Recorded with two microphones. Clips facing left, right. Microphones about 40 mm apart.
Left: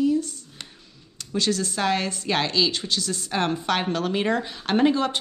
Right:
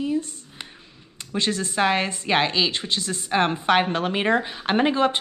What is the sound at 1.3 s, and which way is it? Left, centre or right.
Speech, right.